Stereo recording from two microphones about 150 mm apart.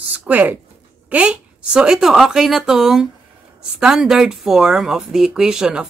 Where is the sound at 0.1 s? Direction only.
10° right (ahead or behind).